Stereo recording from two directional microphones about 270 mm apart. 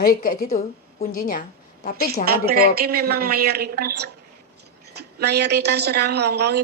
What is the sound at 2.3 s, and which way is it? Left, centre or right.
A woman's voice, right.